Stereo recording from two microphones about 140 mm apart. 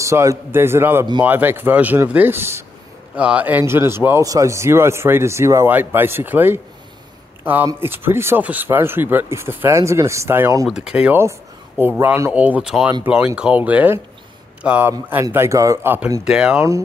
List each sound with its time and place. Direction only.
0.0 s speech: 20° right (ahead or behind)
10.7 s speech: 5° right (ahead or behind)